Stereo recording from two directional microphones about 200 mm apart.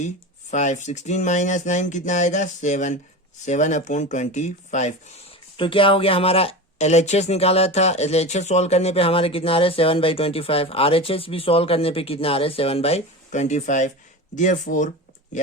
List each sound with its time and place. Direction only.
0.5 s speech: 35° left (ahead or behind)
5.5 s speech: 25° left (ahead or behind)